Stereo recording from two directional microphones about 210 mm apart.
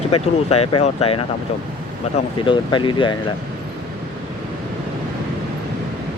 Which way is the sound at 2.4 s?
25° left (ahead or behind).